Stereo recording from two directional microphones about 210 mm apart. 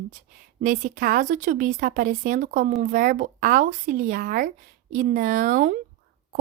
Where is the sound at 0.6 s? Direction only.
40° right (ahead or behind).